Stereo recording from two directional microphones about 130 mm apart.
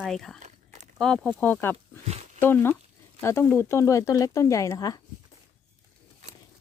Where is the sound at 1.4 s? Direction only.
10° left (ahead or behind); by 5.0 s 25° left (ahead or behind).